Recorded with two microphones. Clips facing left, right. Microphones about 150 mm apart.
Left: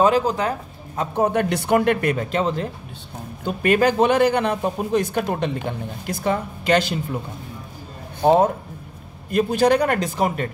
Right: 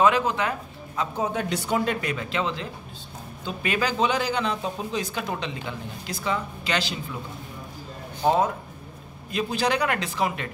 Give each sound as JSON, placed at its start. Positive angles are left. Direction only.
{"t": 0.0, "sound": "a man's voice", "side_deg": 40}
{"t": 1.1, "sound": "a man's voice", "side_deg": 60}
{"t": 8.2, "sound": "a man's voice", "side_deg": 55}